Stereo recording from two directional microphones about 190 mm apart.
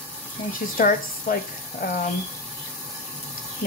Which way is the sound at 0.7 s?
45° left (ahead or behind).